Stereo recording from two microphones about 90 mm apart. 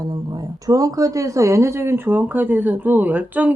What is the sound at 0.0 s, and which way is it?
Speech, 45° right (ahead or behind).